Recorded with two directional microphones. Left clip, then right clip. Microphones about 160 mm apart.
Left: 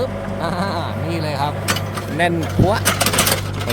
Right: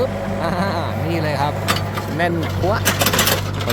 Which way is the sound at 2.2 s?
10° left (ahead or behind).